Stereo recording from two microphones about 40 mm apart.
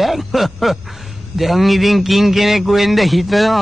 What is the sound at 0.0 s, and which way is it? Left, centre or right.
A man's voice, centre.